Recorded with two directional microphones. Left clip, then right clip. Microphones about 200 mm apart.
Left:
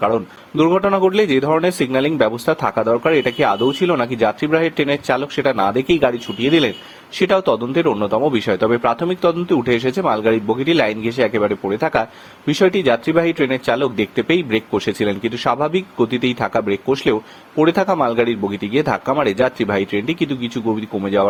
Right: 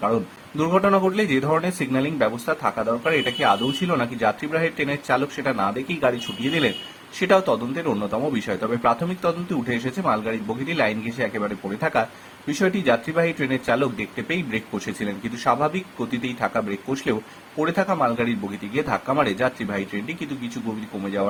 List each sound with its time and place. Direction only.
0.1 s speech: 35° left (ahead or behind)